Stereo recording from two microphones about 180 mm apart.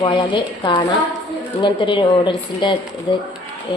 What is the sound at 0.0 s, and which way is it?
A woman's voice, 25° left (ahead or behind).